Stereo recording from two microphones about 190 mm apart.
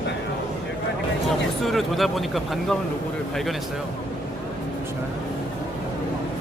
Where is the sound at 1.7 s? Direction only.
Centre (ahead or behind).